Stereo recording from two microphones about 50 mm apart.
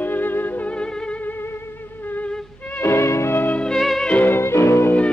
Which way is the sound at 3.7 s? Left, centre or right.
Centre.